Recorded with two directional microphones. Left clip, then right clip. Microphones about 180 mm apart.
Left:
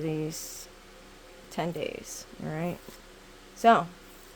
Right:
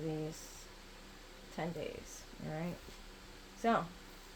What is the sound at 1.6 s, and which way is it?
Speech, 65° left (ahead or behind).